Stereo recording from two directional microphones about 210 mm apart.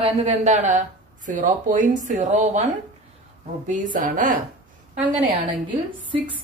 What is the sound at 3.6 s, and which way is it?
Speech, 40° right (ahead or behind).